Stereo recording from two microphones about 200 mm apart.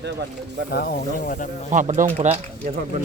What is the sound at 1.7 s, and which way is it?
Speech, 40° right (ahead or behind).